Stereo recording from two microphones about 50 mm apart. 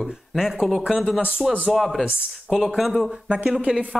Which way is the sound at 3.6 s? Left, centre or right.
Right.